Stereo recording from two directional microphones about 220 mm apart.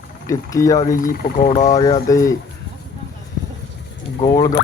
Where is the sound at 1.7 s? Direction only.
15° left (ahead or behind).